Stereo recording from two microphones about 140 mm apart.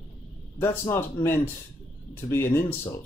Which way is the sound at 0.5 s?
15° left (ahead or behind).